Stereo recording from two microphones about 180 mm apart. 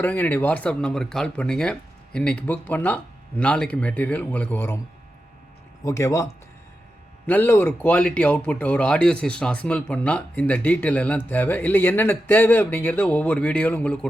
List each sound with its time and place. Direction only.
0.0 s speech: 10° left (ahead or behind)
5.8 s speech: 15° left (ahead or behind)